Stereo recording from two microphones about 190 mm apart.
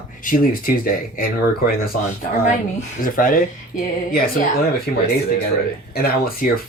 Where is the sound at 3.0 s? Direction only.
45° left (ahead or behind).